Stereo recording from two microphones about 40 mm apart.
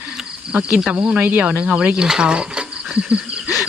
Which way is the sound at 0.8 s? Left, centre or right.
Right.